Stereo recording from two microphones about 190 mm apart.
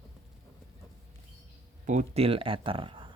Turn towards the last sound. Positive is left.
turn(degrees=-25)  # may be behind; listen again after turning